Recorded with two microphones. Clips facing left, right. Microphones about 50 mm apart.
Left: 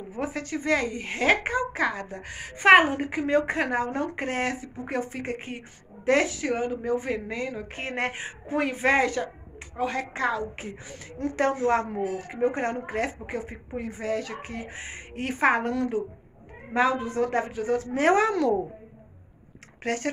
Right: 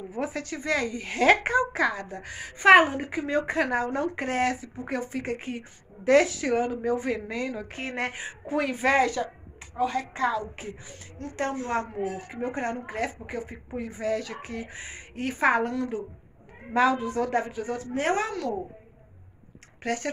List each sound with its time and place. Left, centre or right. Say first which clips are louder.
0.1 s a woman's voice: left 1 dB; left
1.1 s a woman's voice: right 3 dB; centre; by 3.5 s left
3.5 s a woman's voice: even; left
7.7 s a woman's voice: left 2 dB; left
9.8 s speech: right 1 dB; left
11.6 s speech: left 5 dB; left
12.3 s a woman's voice: left 4 dB; left
15.7 s speech: left 3 dB; left
16.7 s speech: right 1 dB; left
17.3 s speech: left 2 dB; left
19.8 s speech: left 1 dB; left